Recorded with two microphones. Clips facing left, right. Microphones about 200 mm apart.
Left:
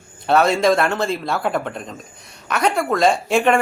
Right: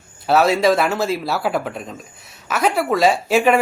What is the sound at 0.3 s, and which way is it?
Speech, 5° right (ahead or behind).